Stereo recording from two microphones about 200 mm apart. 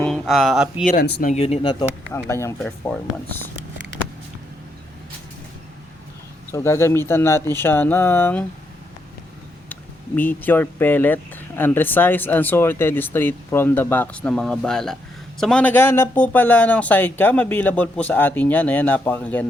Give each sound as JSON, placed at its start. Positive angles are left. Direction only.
{"t": 0.0, "sound": "speech", "side_deg": 0}
{"t": 0.9, "sound": "speech", "side_deg": 50}
{"t": 1.3, "sound": "speech", "side_deg": 35}
{"t": 2.0, "sound": "speech", "side_deg": 10}
{"t": 6.5, "sound": "speech", "side_deg": 15}
{"t": 10.2, "sound": "speech", "side_deg": 10}